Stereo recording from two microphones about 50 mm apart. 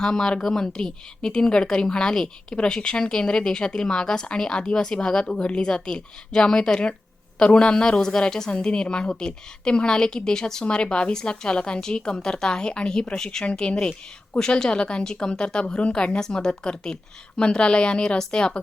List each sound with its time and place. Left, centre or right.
0.0 s a woman's voice: centre